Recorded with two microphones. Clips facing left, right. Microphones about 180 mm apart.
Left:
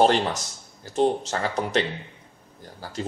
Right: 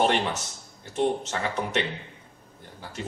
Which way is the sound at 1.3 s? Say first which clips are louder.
Left 3 dB; 35° left (ahead or behind).